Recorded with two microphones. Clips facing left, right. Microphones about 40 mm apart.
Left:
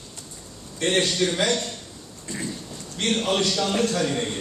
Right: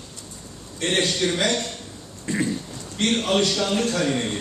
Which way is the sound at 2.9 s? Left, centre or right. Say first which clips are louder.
Right 2 dB; centre.